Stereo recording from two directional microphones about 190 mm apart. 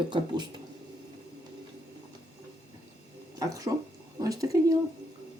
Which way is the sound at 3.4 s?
20° right (ahead or behind).